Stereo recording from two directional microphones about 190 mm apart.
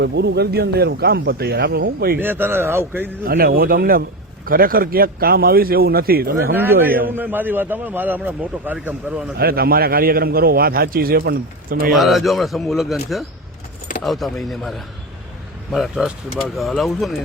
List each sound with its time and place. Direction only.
0.0 s speech: 60° right (ahead or behind)
2.1 s a man's voice: 10° right (ahead or behind)
3.2 s speech: 55° right (ahead or behind)
7.2 s a man's voice: 10° right (ahead or behind)
9.4 s speech: 50° right (ahead or behind)
11.9 s speech: centre (ahead or behind)